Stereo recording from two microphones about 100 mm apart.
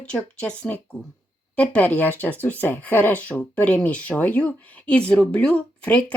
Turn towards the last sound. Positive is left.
turn(degrees=15)  # may be behind; listen again after turning